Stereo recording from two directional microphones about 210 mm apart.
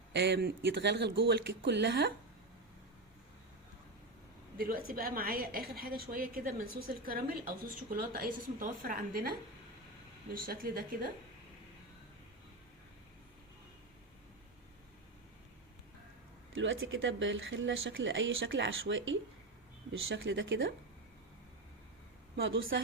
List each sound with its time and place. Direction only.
0.1 s a woman's voice: 55° right (ahead or behind)
4.9 s a woman's voice: 45° right (ahead or behind)
10.3 s a woman's voice: 45° right (ahead or behind)
16.6 s speech: 70° right (ahead or behind)
22.4 s speech: 65° right (ahead or behind)